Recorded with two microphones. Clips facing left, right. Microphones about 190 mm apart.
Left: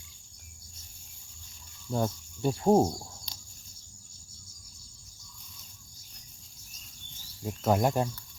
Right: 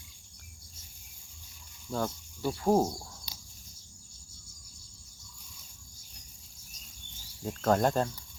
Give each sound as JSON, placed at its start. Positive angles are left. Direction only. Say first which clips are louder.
{"t": 1.9, "sound": "speech", "louder": "left 3 dB", "side_deg": 20}
{"t": 7.4, "sound": "speech", "louder": "even", "side_deg": 10}